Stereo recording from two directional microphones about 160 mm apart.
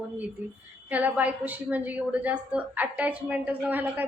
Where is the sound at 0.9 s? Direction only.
10° right (ahead or behind).